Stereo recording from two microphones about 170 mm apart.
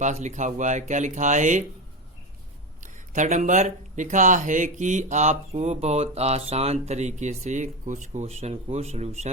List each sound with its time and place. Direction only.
0.0 s speech: 45° right (ahead or behind)
2.8 s speech: 45° right (ahead or behind)